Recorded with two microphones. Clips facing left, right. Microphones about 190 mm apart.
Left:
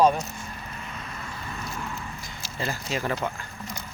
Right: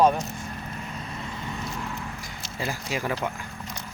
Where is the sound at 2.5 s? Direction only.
10° right (ahead or behind).